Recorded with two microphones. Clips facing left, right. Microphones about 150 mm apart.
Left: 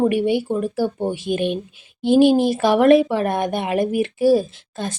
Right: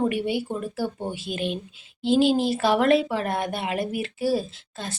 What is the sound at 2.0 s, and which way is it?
Speech, 15° left (ahead or behind).